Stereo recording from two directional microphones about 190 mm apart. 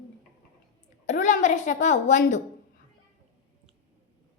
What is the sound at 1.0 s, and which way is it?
A woman's voice, 40° left (ahead or behind).